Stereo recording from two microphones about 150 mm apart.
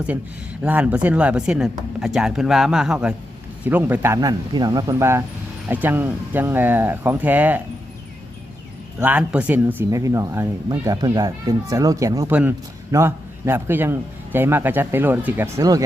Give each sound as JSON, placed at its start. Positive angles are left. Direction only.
{"t": 0.6, "sound": "a man's voice", "side_deg": -10}
{"t": 9.0, "sound": "a man's voice", "side_deg": -10}